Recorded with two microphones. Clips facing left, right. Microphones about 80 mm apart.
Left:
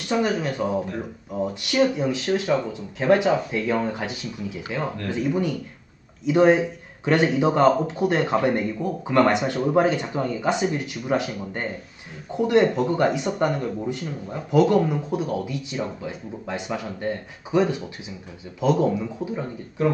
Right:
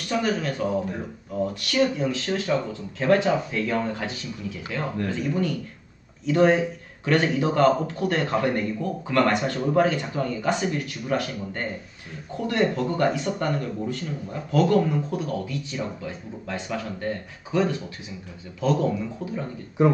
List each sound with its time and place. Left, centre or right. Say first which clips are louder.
0.1 s a man's voice: left 2 dB; centre
19.8 s speech: right 2 dB; right